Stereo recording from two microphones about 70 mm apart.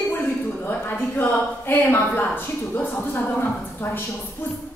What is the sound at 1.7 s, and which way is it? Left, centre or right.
A woman's voice, left.